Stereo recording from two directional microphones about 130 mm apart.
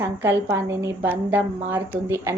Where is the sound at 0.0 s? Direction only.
15° right (ahead or behind).